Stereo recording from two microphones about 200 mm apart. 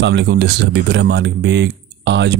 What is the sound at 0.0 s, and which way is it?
Speech, 60° right (ahead or behind).